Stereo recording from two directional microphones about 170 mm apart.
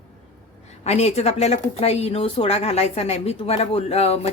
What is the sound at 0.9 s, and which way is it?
A woman's voice, 40° left (ahead or behind).